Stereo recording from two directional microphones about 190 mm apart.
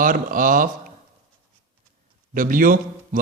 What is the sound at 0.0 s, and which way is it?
Speech, 45° right (ahead or behind).